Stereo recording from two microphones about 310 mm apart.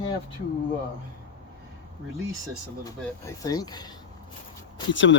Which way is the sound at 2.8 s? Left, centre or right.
Centre.